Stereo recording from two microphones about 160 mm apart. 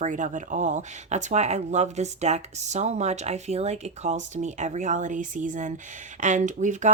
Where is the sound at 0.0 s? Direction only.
50° right (ahead or behind).